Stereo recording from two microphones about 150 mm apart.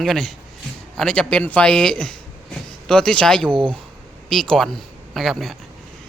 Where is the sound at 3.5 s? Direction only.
35° right (ahead or behind).